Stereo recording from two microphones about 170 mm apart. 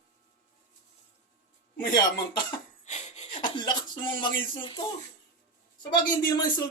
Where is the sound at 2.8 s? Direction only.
45° left (ahead or behind); by 3.7 s 25° left (ahead or behind).